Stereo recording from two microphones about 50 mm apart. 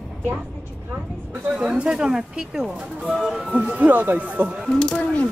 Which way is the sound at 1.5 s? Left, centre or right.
Right.